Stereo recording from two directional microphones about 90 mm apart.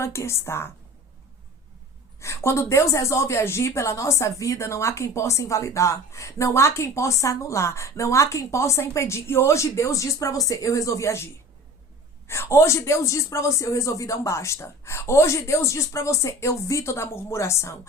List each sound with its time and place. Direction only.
0.0 s a woman's voice: 30° left (ahead or behind)
2.2 s a woman's voice: 30° left (ahead or behind)
12.3 s a woman's voice: 30° left (ahead or behind)